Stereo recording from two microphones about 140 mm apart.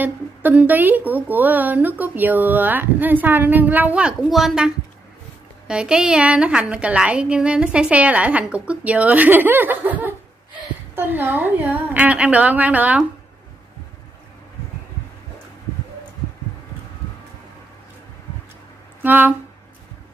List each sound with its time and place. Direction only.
0.0 s speech: 10° right (ahead or behind)
19.0 s speech: 15° right (ahead or behind)